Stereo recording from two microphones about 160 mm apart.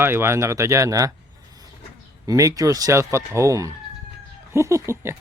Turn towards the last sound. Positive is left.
turn(degrees=-15)  # may be behind; listen again after turning